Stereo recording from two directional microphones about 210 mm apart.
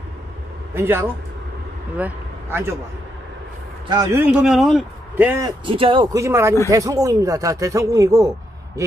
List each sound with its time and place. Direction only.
0.7 s a man's voice: 10° right (ahead or behind)
3.9 s speech: 15° right (ahead or behind)
4.3 s a man's voice: 5° right (ahead or behind)
5.7 s speech: 25° right (ahead or behind)